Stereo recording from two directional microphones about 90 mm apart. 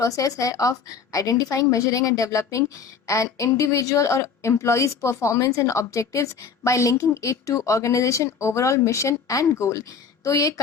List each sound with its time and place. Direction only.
0.0 s a woman's voice: 40° left (ahead or behind)